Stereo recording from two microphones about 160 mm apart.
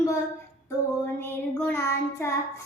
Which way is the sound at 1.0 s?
10° left (ahead or behind).